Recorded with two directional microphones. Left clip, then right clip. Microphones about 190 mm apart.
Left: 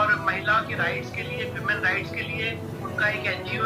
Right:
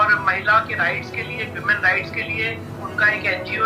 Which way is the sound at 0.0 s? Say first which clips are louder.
Right 6 dB; 50° right (ahead or behind).